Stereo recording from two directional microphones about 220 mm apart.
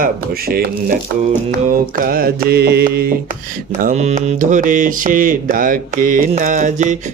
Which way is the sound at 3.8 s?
30° right (ahead or behind).